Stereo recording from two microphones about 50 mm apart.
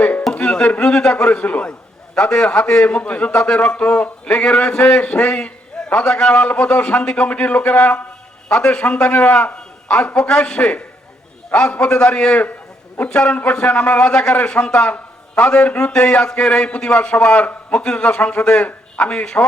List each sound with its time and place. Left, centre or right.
0.0 s music: left
0.3 s a man's voice: left